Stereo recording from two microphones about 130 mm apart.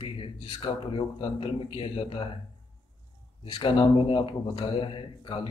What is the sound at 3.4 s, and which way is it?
Speech, 40° left (ahead or behind).